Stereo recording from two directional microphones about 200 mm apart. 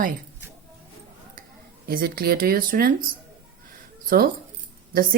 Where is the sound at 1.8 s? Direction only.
50° right (ahead or behind).